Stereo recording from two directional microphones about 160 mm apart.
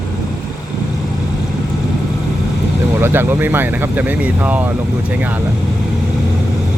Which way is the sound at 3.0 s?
15° right (ahead or behind).